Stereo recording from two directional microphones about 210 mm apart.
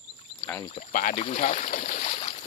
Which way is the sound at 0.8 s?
40° left (ahead or behind).